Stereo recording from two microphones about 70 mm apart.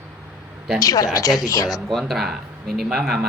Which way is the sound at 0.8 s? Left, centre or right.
Left.